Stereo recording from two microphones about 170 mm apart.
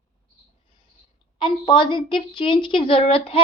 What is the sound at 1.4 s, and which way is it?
A woman's voice, 30° left (ahead or behind).